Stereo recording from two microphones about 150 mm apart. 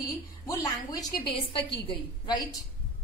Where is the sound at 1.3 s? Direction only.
35° left (ahead or behind).